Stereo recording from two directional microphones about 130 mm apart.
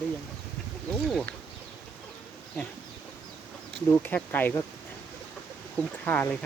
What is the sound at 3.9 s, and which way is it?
Speech, 15° left (ahead or behind).